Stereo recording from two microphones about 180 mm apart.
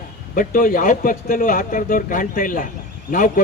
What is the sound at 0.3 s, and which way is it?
Speech, 50° left (ahead or behind).